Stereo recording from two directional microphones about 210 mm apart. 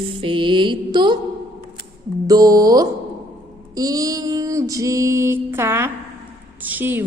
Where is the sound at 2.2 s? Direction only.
15° right (ahead or behind).